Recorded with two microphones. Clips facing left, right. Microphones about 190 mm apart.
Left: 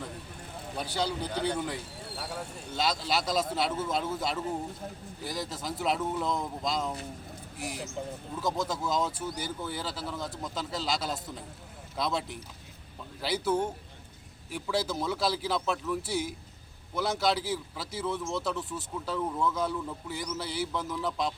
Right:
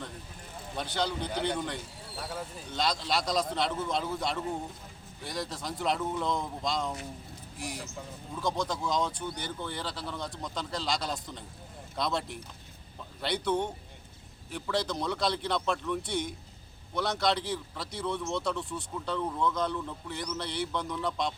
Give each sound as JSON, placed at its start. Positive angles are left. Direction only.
{"t": 0.8, "sound": "a man's voice", "side_deg": 5}